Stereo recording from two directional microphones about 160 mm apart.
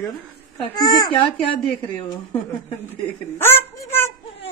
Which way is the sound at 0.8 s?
25° left (ahead or behind).